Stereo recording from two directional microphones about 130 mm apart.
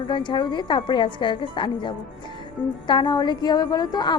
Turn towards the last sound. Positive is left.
turn(degrees=35)  # may be behind; listen again after turning